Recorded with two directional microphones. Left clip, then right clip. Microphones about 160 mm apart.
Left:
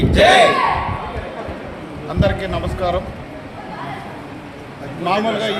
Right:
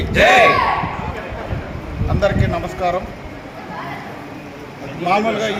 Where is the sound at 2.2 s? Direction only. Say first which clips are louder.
Right 1 dB; centre (ahead or behind).